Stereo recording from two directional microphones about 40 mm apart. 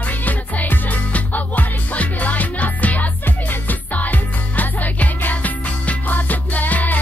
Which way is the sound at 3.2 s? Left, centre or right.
Left.